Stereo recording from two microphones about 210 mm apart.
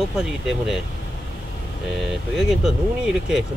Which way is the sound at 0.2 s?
5° right (ahead or behind).